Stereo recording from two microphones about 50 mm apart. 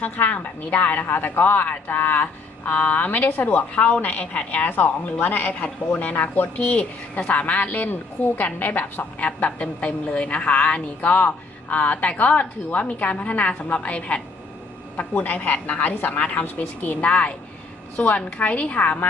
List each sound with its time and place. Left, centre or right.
0.0 s a woman's voice: left
3.8 s speech: left
15.1 s a woman's voice: left
15.4 s a woman's voice: left